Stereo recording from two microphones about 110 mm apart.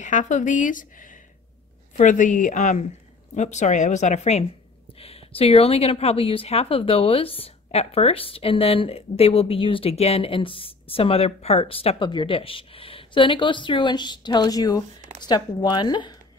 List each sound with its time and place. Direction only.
0.2 s speech: 90° left
2.5 s speech: 90° left
4.9 s a woman's voice: 60° left (ahead or behind); by 16.2 s 40° left (ahead or behind)